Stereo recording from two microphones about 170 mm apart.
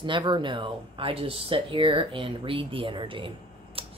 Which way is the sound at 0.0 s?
30° right (ahead or behind).